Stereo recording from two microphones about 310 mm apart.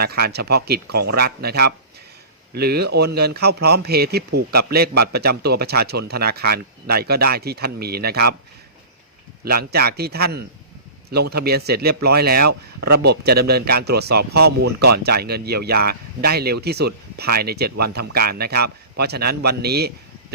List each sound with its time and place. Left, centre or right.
0.0 s speech: right
9.4 s speech: right